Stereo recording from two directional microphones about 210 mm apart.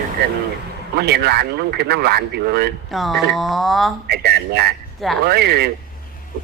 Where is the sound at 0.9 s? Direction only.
50° right (ahead or behind).